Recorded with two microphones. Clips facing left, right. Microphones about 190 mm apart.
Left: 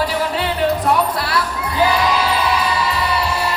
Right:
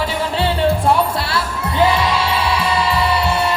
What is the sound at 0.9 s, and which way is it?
Basketball bounce, 25° right (ahead or behind).